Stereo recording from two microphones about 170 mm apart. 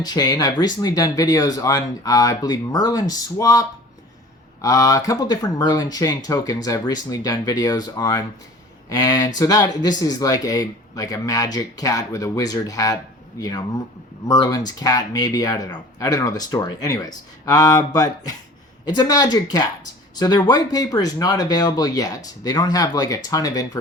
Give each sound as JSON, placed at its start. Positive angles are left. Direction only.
{"t": 0.0, "sound": "speech", "side_deg": 25}